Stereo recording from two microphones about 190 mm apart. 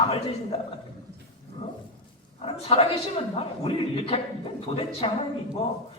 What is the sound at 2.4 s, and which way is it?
A woman's voice, 30° left (ahead or behind).